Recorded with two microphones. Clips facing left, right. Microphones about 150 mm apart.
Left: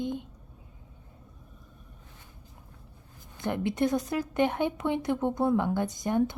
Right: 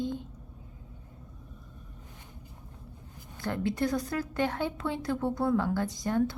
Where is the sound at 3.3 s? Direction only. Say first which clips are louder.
Left 1 dB; 20° left (ahead or behind).